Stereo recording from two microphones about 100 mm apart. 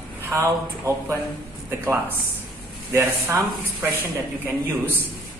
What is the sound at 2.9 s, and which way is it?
Speech, 25° right (ahead or behind).